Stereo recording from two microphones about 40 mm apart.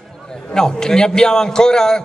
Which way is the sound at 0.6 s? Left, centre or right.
Centre.